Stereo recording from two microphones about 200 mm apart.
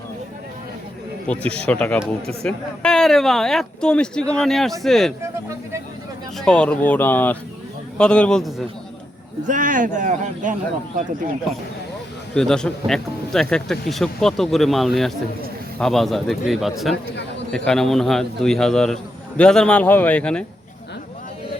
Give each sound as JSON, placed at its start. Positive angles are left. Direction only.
{"t": 1.4, "sound": "a man's voice", "side_deg": 5}
{"t": 6.4, "sound": "a man's voice", "side_deg": 5}
{"t": 9.5, "sound": "a man's voice", "side_deg": -40}
{"t": 12.3, "sound": "a man's voice", "side_deg": 5}